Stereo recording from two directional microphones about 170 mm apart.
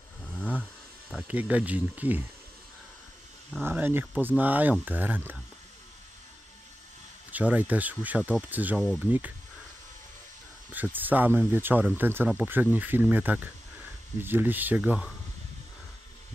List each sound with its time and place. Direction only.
0.3 s a sound: 5° left (ahead or behind)
1.1 s speech: 10° right (ahead or behind)
3.5 s speech: 10° right (ahead or behind)
7.2 s speech: 10° right (ahead or behind)
10.7 s speech: 10° right (ahead or behind)